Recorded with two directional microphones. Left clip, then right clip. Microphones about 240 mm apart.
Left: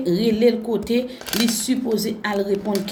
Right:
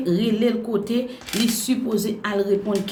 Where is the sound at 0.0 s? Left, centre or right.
Centre.